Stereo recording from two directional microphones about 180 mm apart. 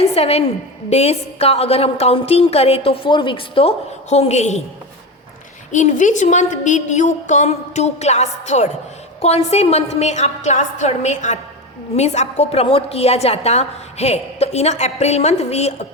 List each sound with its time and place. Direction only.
0.0 s a woman's voice: 35° left (ahead or behind)
5.7 s a woman's voice: 45° left (ahead or behind)